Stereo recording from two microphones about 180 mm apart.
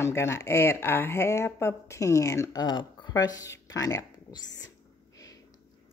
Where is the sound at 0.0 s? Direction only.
15° left (ahead or behind).